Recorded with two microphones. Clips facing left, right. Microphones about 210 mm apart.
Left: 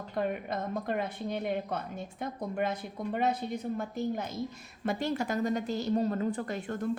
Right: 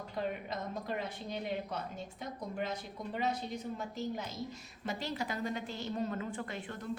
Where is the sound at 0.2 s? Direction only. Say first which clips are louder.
Left 5 dB; 55° left (ahead or behind).